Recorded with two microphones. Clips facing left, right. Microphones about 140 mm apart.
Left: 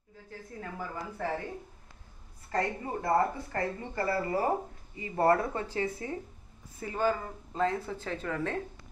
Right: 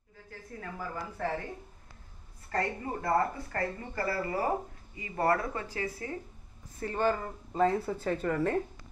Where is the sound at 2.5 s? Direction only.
20° left (ahead or behind).